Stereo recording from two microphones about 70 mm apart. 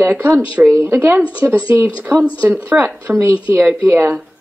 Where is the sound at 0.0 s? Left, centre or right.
Right.